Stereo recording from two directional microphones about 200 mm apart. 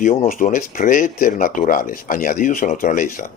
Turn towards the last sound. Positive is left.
turn(degrees=40)  # may be behind; listen again after turning